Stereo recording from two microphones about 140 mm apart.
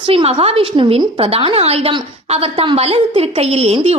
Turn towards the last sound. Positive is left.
turn(degrees=-45)  # may be behind; listen again after turning